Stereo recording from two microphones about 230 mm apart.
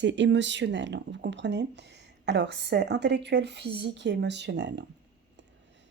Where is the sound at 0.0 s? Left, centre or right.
Right.